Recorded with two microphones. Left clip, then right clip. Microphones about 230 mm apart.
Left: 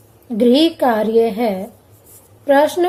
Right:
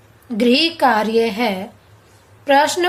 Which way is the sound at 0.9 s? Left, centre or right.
Right.